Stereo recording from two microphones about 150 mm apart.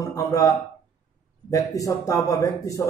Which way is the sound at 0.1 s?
20° left (ahead or behind).